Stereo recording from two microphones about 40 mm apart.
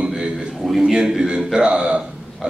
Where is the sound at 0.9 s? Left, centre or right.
Centre.